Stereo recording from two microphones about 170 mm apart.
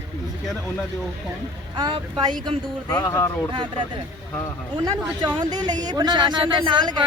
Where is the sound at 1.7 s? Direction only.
30° right (ahead or behind).